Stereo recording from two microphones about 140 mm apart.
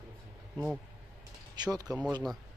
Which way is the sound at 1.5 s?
30° right (ahead or behind).